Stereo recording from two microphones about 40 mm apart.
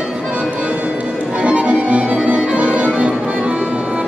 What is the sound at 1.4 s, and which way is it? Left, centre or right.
Music, right.